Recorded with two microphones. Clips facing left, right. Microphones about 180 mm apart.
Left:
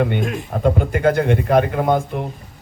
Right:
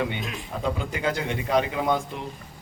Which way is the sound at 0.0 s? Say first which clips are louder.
Left 9 dB; 55° left (ahead or behind).